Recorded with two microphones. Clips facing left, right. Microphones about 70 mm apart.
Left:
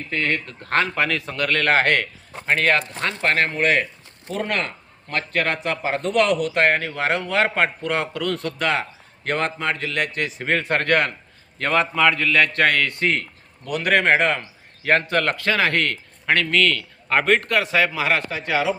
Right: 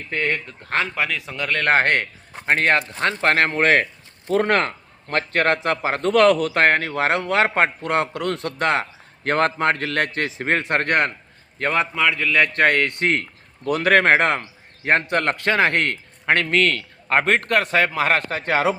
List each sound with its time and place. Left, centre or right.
0.1 s speech: right
0.3 s speech: centre
1.5 s speech: right
3.0 s a man's voice: right
7.4 s a man's voice: right
9.2 s a man's voice: right
10.3 s a man's voice: right
11.6 s a man's voice: centre
12.8 s a man's voice: right
13.7 s a man's voice: right
14.2 s a man's voice: right